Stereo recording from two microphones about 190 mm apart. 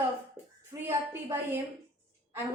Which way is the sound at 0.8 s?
10° right (ahead or behind).